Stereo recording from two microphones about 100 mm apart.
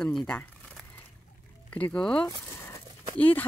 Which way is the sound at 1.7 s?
15° left (ahead or behind).